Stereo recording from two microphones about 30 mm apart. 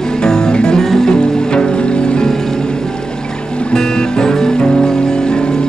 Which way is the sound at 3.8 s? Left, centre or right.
Left.